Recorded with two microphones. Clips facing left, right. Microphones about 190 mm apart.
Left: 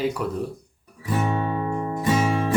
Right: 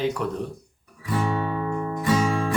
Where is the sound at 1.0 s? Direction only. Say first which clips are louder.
Left 1 dB; 20° left (ahead or behind).